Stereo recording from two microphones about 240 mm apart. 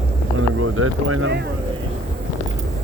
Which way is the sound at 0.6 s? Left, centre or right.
Right.